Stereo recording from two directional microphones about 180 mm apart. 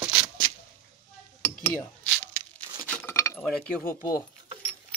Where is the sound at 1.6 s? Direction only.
10° left (ahead or behind).